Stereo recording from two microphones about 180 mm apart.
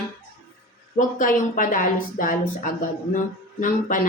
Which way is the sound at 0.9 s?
50° left (ahead or behind).